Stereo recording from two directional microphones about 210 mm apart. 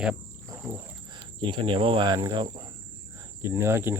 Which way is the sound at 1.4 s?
25° right (ahead or behind).